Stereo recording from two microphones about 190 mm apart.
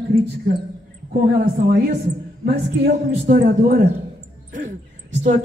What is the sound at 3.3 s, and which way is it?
Speech, 50° right (ahead or behind).